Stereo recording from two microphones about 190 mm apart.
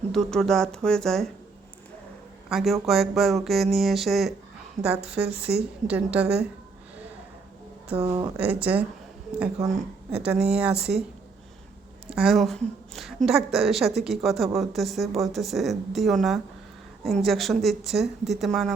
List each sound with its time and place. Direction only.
0.1 s a woman's voice: centre (ahead or behind)
2.5 s a woman's voice: centre (ahead or behind)
5.2 s speech: 15° right (ahead or behind)
5.9 s a woman's voice: 5° right (ahead or behind)
7.9 s speech: 30° right (ahead or behind)
8.4 s speech: 10° right (ahead or behind)
10.1 s a woman's voice: 5° right (ahead or behind)
12.1 s a woman's voice: centre (ahead or behind)